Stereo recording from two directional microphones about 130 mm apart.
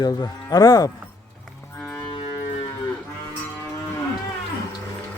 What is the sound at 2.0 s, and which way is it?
Music, 40° left (ahead or behind).